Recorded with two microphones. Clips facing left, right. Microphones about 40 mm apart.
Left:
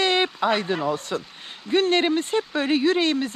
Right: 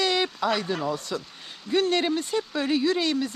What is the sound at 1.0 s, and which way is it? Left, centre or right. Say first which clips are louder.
Speech: left 3 dB; left.